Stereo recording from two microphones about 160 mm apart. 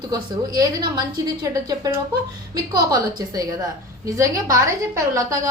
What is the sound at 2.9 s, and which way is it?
A woman's voice, 25° right (ahead or behind).